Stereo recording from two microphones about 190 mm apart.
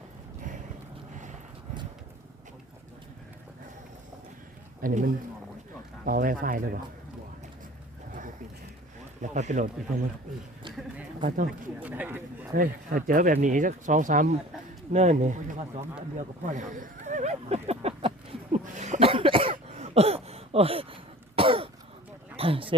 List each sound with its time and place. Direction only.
1.1 s a sound: 40° right (ahead or behind)
4.8 s speech: 45° right (ahead or behind)
9.2 s speech: 40° right (ahead or behind)
11.3 s speech: 45° right (ahead or behind)
11.8 s speech: 10° right (ahead or behind)
12.5 s speech: 45° right (ahead or behind)
16.1 s a sound: 40° right (ahead or behind)
18.8 s cough: 35° right (ahead or behind)
22.4 s a sound: 30° right (ahead or behind)